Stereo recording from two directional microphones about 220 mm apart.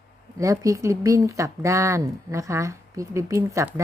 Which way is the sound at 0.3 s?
15° right (ahead or behind).